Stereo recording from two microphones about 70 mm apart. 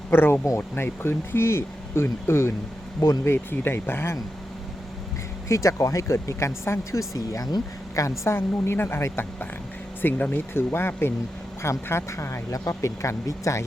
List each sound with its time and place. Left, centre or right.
0.1 s speech: left
5.5 s speech: left
7.1 s speech: left
8.2 s speech: left
10.0 s speech: left